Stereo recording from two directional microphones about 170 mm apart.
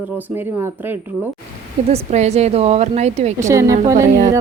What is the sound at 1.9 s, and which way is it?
A woman's voice, 40° right (ahead or behind).